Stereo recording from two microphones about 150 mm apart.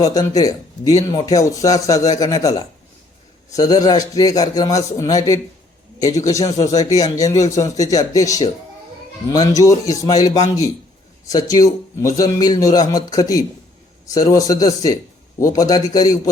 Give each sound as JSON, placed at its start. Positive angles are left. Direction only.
{"t": 0.0, "sound": "speech", "side_deg": 25}